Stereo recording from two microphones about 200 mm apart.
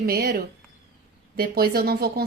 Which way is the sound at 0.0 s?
50° right (ahead or behind).